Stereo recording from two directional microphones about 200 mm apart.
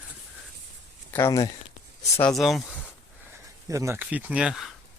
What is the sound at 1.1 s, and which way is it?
Speech, 15° left (ahead or behind).